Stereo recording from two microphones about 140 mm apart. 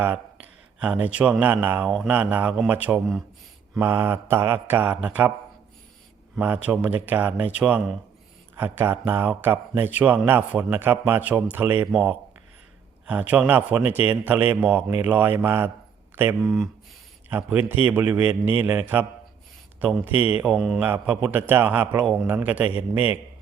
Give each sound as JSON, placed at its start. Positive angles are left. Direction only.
{"t": 0.8, "sound": "speech", "side_deg": -10}
{"t": 6.3, "sound": "speech", "side_deg": -10}
{"t": 16.4, "sound": "speech", "side_deg": 0}
{"t": 17.2, "sound": "speech", "side_deg": -15}
{"t": 20.8, "sound": "speech", "side_deg": -15}